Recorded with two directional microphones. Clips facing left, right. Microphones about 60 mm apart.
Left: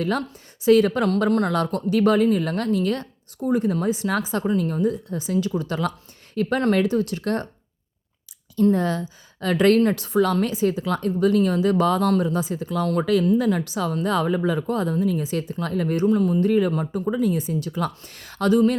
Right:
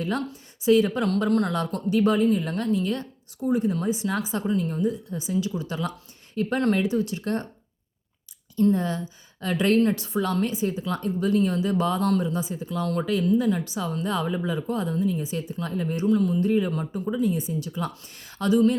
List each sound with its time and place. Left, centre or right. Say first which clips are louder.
0.0 s a woman's voice: left 3 dB; left
1.3 s speech: left 2 dB; left
1.5 s a woman's voice: left 3 dB; left
6.3 s speech: left 3 dB; left
6.7 s a woman's voice: left 3 dB; left
8.7 s speech: left 3 dB; left
9.8 s a woman's voice: left 4 dB; left
12.0 s a woman's voice: left 3 dB; left
15.6 s a woman's voice: left 6 dB; left
16.0 s speech: left 2 dB; left
16.5 s a woman's voice: left 4 dB; left